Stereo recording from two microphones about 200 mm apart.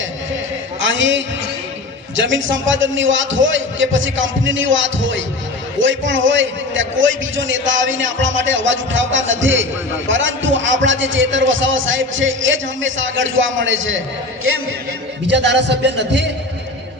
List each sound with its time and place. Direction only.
0.8 s a man's voice: 70° right (ahead or behind)
15.3 s speech: 60° right (ahead or behind)